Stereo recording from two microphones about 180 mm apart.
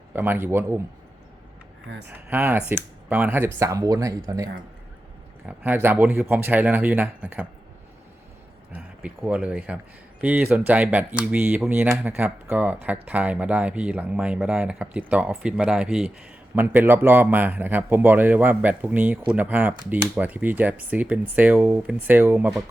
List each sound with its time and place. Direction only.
0.1 s speech: 10° right (ahead or behind)
2.0 s speech: 10° right (ahead or behind)
5.5 s speech: 10° right (ahead or behind)
8.7 s speech: 5° right (ahead or behind)